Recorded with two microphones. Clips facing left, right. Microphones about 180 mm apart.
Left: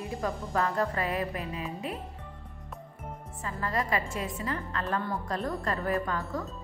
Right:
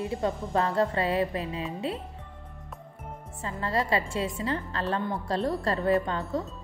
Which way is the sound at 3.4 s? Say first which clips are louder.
Right 3 dB; 30° right (ahead or behind).